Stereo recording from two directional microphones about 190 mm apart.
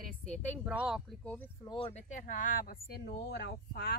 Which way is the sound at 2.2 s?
50° left (ahead or behind).